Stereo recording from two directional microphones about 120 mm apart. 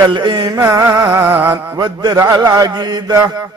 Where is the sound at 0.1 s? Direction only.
40° right (ahead or behind).